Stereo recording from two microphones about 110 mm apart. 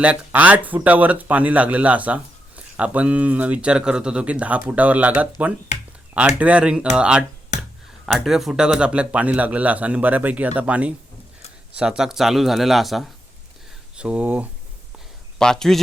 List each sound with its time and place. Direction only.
0.0 s speech: 15° right (ahead or behind)
15.4 s speech: 5° left (ahead or behind)